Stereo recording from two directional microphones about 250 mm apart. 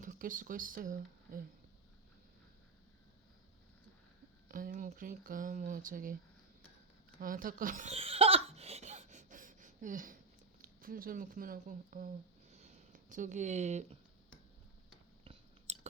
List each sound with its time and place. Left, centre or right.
0.0 s speech: right
4.4 s speech: right
7.2 s laughter: right
10.6 s speech: right
12.5 s a sound: right
15.2 s chewing: right